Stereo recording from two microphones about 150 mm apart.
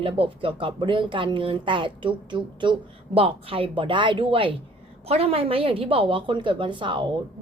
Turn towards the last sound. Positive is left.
turn(degrees=-35)  # may be behind; listen again after turning